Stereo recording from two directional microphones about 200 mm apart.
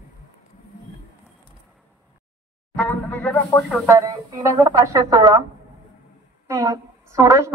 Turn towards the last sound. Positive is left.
turn(degrees=-15)  # may be behind; listen again after turning